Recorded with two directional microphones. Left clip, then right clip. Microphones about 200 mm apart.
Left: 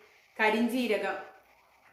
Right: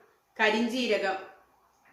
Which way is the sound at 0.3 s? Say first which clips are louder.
Right 1 dB; centre (ahead or behind).